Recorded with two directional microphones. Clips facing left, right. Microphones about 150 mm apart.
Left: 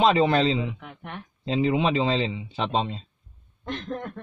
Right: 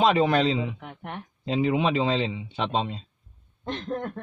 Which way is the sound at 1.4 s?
5° right (ahead or behind).